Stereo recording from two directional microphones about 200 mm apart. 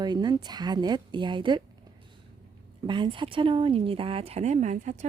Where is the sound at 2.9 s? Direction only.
25° right (ahead or behind).